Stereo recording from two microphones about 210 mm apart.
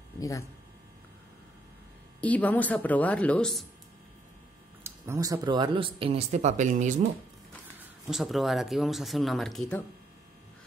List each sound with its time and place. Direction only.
0.2 s a woman's voice: 15° left (ahead or behind)
2.2 s a woman's voice: 5° left (ahead or behind)
4.8 s speech: 15° right (ahead or behind); by 7.1 s 35° right (ahead or behind)
8.1 s speech: centre (ahead or behind)